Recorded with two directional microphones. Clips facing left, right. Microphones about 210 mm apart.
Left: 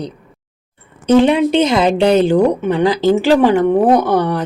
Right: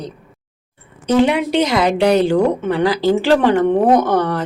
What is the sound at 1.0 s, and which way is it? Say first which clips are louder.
A woman's voice: left 4 dB; 25° left (ahead or behind).